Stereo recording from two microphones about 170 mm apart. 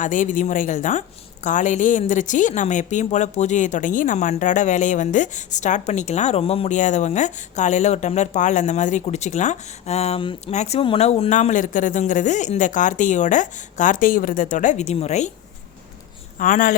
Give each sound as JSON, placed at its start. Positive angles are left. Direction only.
{"t": 0.0, "sound": "speech", "side_deg": 50}
{"t": 16.4, "sound": "speech", "side_deg": 55}